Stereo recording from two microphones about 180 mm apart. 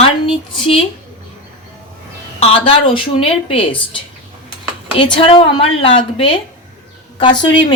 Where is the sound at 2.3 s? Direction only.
30° left (ahead or behind).